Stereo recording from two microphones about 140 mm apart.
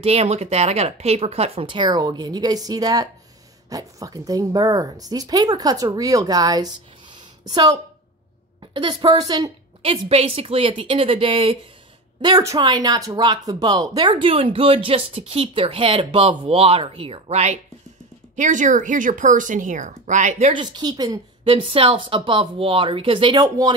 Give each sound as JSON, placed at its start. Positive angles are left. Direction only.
{"t": 0.0, "sound": "speech", "side_deg": -45}
{"t": 12.2, "sound": "speech", "side_deg": -25}
{"t": 18.3, "sound": "speech", "side_deg": -60}
{"t": 20.5, "sound": "speech", "side_deg": -30}
{"t": 21.5, "sound": "speech", "side_deg": -40}